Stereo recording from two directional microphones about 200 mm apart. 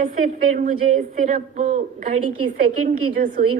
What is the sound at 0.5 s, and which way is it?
A woman's voice, 40° right (ahead or behind).